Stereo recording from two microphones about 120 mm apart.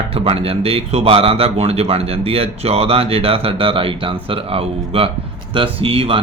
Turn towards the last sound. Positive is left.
turn(degrees=-50)  # may be behind; listen again after turning